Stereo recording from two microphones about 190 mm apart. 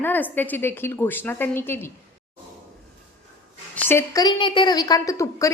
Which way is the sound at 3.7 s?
10° left (ahead or behind).